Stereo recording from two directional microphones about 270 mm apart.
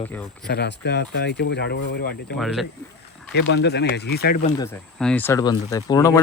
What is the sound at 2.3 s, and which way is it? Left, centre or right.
Speech, centre.